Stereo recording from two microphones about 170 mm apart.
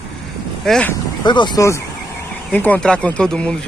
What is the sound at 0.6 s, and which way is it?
Speech, 5° left (ahead or behind).